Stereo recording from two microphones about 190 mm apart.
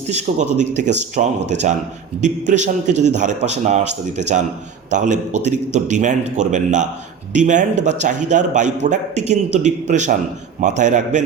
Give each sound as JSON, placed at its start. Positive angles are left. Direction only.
{"t": 0.1, "sound": "a man's voice", "side_deg": -40}